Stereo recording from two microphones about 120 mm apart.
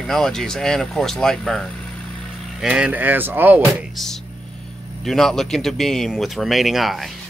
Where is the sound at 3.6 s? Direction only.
Centre (ahead or behind).